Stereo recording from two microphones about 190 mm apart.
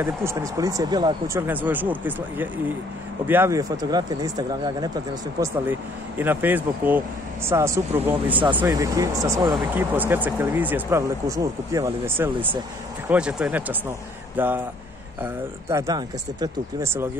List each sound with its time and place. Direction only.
0.0 s speech: 15° right (ahead or behind)
5.4 s speech: 10° right (ahead or behind)